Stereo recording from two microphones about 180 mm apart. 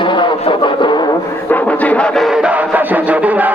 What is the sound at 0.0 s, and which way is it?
Music, 25° left (ahead or behind).